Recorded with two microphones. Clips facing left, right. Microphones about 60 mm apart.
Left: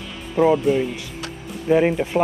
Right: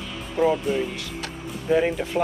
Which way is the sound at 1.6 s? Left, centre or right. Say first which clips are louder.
Left 4 dB; centre.